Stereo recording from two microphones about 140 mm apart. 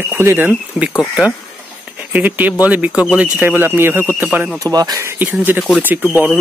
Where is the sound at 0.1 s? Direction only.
15° right (ahead or behind).